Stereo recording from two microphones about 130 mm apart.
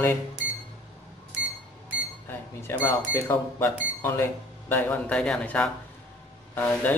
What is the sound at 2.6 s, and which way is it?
A man's voice, 20° left (ahead or behind).